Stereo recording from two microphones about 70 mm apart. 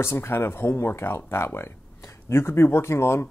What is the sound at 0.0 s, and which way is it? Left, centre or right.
Speech, left.